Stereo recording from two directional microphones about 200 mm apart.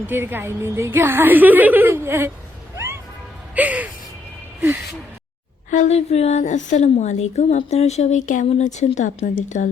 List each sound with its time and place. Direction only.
0.1 s a woman's voice: 10° right (ahead or behind)
3.5 s a woman's voice: 5° right (ahead or behind)
5.7 s a woman's voice: 35° left (ahead or behind)